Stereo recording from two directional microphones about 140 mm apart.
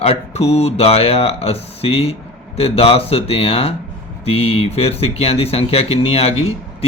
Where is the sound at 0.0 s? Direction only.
45° left (ahead or behind).